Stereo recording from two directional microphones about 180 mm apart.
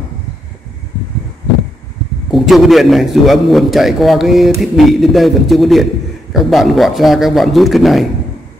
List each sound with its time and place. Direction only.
2.3 s a man's voice: centre (ahead or behind)